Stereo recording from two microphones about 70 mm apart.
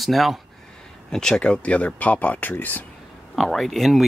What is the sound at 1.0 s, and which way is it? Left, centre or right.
Speech, centre.